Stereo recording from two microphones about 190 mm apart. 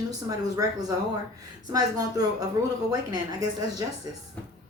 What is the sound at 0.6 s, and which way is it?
A woman's voice, 20° right (ahead or behind).